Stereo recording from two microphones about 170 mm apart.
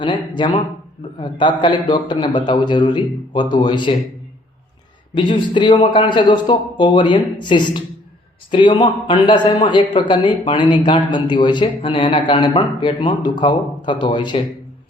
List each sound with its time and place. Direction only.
0.0 s a man's voice: 25° left (ahead or behind)
5.1 s a man's voice: 30° left (ahead or behind)